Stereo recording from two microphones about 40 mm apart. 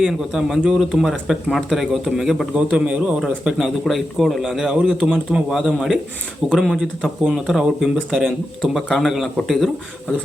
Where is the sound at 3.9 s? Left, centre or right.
Centre.